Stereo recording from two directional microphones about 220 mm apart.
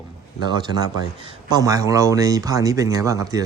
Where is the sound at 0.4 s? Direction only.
20° right (ahead or behind).